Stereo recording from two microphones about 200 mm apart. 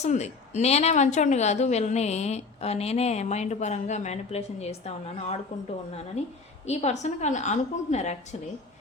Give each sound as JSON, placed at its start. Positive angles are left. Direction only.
{"t": 0.0, "sound": "a woman's voice", "side_deg": 35}